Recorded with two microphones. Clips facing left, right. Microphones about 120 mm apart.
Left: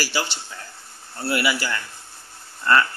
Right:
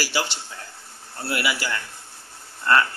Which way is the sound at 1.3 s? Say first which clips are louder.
Left 3 dB; 5° right (ahead or behind).